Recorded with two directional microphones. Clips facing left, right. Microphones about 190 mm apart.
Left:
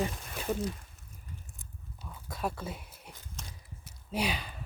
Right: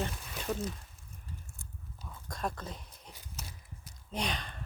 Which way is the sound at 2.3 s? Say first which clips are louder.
Left 2 dB; 5° left (ahead or behind).